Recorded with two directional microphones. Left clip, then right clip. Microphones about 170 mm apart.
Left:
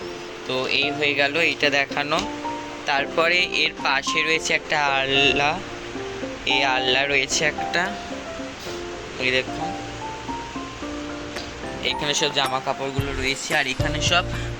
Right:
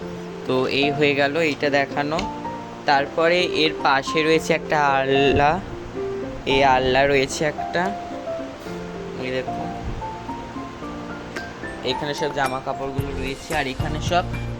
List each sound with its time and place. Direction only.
0.4 s speech: 55° right (ahead or behind)
1.2 s speech: 35° right (ahead or behind)
6.4 s speech: 25° right (ahead or behind)
7.7 s speech: 15° right (ahead or behind)
12.0 s speech: 15° right (ahead or behind)
12.4 s speech: centre (ahead or behind)
13.7 s speech: 15° right (ahead or behind)